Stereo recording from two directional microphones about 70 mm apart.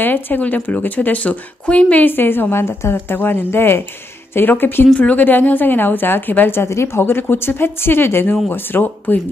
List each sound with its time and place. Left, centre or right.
0.0 s speech: left